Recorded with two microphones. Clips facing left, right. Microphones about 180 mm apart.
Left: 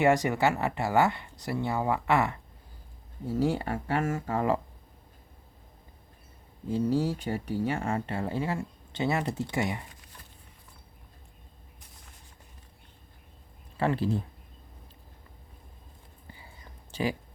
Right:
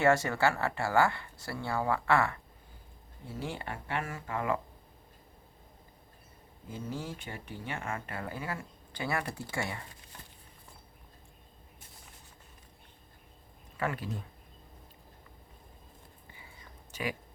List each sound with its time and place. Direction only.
0.0 s speech: 15° left (ahead or behind)
3.2 s speech: 40° left (ahead or behind)
6.7 s speech: 35° left (ahead or behind); by 9.8 s 20° left (ahead or behind)
13.7 s speech: 30° left (ahead or behind)
16.9 s speech: 30° left (ahead or behind)